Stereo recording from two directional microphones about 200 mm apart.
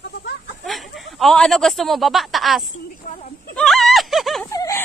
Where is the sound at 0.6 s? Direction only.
Centre (ahead or behind).